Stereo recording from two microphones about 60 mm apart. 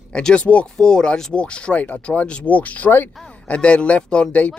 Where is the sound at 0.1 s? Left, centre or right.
Centre.